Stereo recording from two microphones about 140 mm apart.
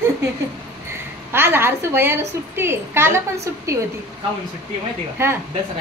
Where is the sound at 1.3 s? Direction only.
15° right (ahead or behind).